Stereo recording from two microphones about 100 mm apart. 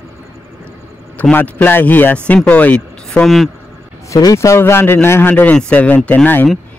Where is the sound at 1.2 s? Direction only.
15° left (ahead or behind).